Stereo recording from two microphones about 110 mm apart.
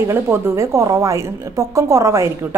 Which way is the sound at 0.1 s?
25° right (ahead or behind).